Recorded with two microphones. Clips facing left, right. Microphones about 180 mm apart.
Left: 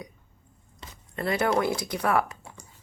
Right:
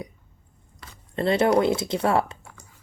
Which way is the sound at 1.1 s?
25° right (ahead or behind).